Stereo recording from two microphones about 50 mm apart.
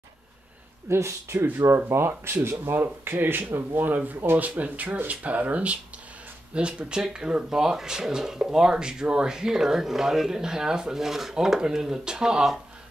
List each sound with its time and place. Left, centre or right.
0.8 s speech: right
1.9 s speech: right; by 12.5 s centre